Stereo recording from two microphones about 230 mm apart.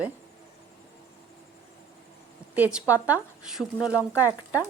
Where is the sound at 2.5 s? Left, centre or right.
Centre.